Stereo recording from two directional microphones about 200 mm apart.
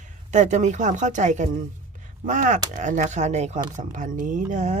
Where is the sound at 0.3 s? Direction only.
35° right (ahead or behind).